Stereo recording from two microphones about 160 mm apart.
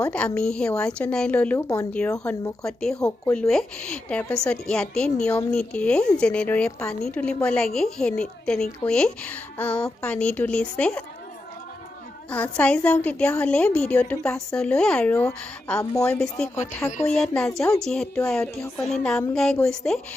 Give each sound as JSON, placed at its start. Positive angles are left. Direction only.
{"t": 0.0, "sound": "a woman's voice", "side_deg": 5}
{"t": 1.5, "sound": "speech", "side_deg": 20}
{"t": 2.6, "sound": "a woman's voice", "side_deg": 5}
{"t": 12.3, "sound": "a woman's voice", "side_deg": 10}
{"t": 15.8, "sound": "speech", "side_deg": 20}
{"t": 16.0, "sound": "a woman's voice", "side_deg": 10}